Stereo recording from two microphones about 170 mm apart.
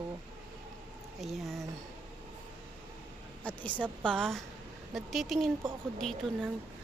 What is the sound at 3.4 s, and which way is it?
A woman's voice, 10° left (ahead or behind).